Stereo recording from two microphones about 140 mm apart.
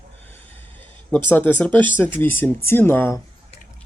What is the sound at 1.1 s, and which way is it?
Speech, 10° left (ahead or behind).